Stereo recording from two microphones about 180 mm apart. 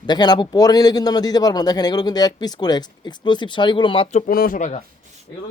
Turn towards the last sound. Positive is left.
turn(degrees=40)  # may be behind; listen again after turning